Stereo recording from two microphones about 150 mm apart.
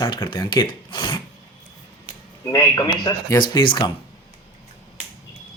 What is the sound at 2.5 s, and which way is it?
Speech, 20° left (ahead or behind).